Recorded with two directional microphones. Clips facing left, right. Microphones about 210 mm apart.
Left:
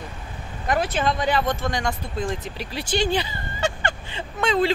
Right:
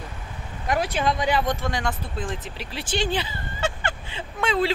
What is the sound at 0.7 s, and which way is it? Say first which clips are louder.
Speech: left 1 dB; 10° right (ahead or behind).